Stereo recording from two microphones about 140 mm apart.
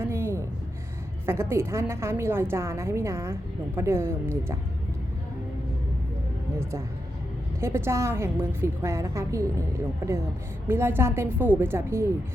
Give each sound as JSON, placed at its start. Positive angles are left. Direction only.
{"t": 0.0, "sound": "a sound", "side_deg": -15}
{"t": 1.3, "sound": "a woman's voice", "side_deg": -15}
{"t": 6.6, "sound": "a woman's voice", "side_deg": -20}
{"t": 10.7, "sound": "a woman's voice", "side_deg": -15}